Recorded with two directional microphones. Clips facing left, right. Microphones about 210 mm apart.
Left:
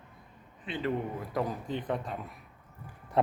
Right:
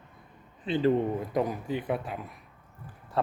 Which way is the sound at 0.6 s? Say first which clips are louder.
Right 8 dB; 30° right (ahead or behind).